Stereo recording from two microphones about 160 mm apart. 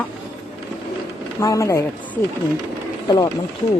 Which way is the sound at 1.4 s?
20° left (ahead or behind).